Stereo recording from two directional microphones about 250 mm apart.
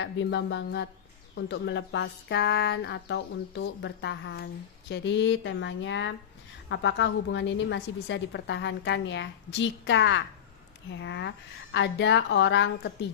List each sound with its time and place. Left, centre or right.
0.0 s a woman's voice: left